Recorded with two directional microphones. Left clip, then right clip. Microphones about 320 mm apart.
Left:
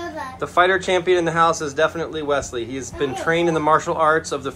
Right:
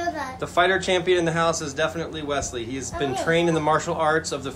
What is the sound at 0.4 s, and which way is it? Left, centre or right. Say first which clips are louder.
A man's voice: left 4 dB; centre.